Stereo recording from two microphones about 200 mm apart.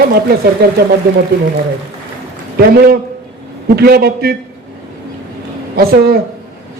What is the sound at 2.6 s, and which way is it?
A man's voice, 50° right (ahead or behind).